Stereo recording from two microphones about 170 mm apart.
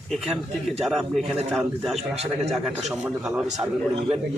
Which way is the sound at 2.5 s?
5° right (ahead or behind).